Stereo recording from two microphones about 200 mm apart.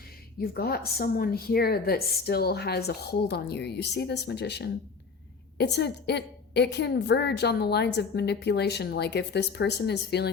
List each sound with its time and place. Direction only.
0.3 s a woman's voice: 50° left (ahead or behind)